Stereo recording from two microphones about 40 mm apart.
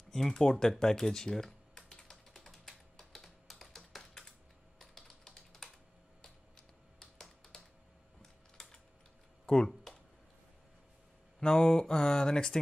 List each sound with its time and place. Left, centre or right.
0.1 s typing: centre
7.0 s computer keyboard: centre
8.2 s typing: centre
11.3 s speech: centre